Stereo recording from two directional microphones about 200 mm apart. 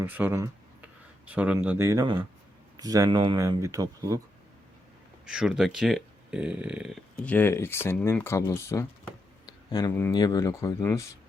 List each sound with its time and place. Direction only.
0.0 s a sound: 10° right (ahead or behind)
1.3 s speech: 10° right (ahead or behind)
5.2 s speech: 5° right (ahead or behind); by 11.1 s 15° left (ahead or behind)